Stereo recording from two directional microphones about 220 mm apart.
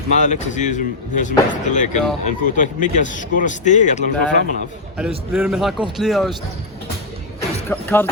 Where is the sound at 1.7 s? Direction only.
35° left (ahead or behind).